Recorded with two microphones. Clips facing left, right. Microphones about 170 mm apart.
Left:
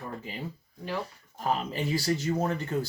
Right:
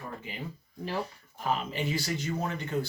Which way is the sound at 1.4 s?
40° left (ahead or behind).